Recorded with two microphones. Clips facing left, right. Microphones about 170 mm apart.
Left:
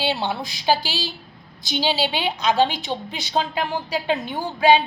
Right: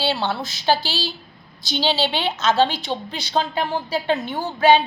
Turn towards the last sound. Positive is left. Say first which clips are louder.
# right 1 dB
turn(degrees=15)  # may be behind; listen again after turning